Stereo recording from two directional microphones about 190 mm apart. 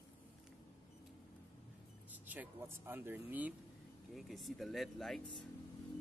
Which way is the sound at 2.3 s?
10° right (ahead or behind).